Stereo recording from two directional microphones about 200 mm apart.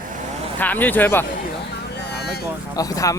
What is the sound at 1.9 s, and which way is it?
Vehicle, 55° left (ahead or behind).